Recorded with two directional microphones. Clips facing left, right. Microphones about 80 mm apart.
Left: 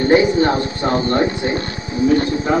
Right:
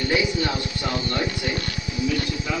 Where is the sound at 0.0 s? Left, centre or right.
Left.